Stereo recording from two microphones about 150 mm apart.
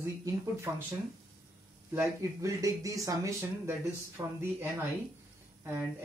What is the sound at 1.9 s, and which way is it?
Speech, 15° right (ahead or behind).